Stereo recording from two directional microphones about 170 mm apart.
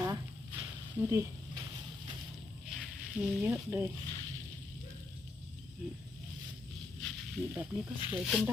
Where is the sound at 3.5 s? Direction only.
10° right (ahead or behind).